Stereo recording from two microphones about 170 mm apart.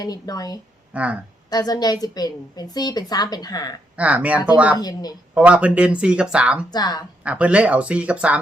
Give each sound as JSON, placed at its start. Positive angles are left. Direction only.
{"t": 0.0, "sound": "a woman's voice", "side_deg": 20}
{"t": 0.9, "sound": "speech", "side_deg": -10}
{"t": 1.5, "sound": "a woman's voice", "side_deg": 25}
{"t": 3.9, "sound": "speech", "side_deg": -10}
{"t": 4.8, "sound": "a woman's voice", "side_deg": 25}
{"t": 5.3, "sound": "speech", "side_deg": -5}
{"t": 6.7, "sound": "a woman's voice", "side_deg": 25}
{"t": 7.3, "sound": "speech", "side_deg": -5}